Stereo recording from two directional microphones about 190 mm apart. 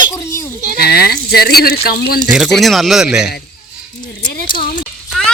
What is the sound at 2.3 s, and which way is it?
Speech, centre (ahead or behind).